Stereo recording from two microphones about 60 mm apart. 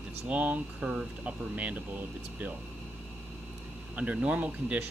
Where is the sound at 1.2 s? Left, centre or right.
Right.